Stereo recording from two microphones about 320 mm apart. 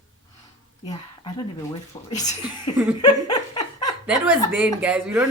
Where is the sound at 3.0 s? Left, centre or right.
Centre.